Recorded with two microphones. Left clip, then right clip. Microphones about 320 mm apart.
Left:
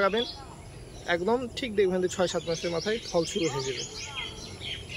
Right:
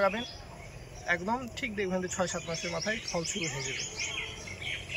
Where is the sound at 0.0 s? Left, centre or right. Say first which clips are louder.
Left 3 dB; centre.